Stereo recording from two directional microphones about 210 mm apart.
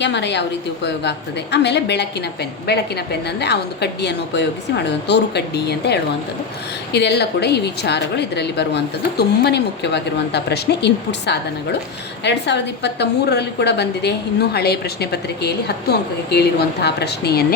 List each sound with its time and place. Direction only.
0.0 s a woman's voice: 55° left (ahead or behind)